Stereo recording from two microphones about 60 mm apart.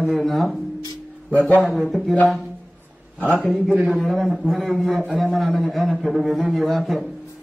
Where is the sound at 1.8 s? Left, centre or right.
Centre.